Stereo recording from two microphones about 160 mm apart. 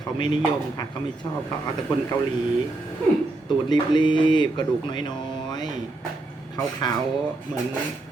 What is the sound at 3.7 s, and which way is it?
Speech, 30° left (ahead or behind).